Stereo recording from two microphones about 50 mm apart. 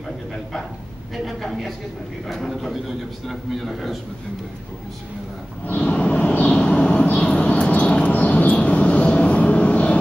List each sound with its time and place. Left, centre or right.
1.1 s a man's voice: centre
5.7 s vehicle: left
6.8 s a sound: left
8.1 s vehicle: left